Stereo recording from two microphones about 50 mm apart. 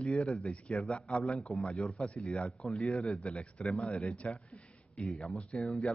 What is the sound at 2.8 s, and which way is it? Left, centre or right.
A man's voice, centre.